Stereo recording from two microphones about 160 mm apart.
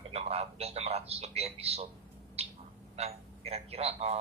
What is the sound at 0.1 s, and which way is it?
Speech, 40° right (ahead or behind).